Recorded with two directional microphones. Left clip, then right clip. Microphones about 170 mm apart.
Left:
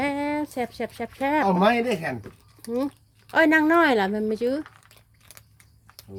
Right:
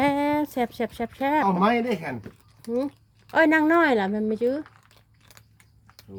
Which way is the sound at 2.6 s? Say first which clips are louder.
Even; 5° left (ahead or behind).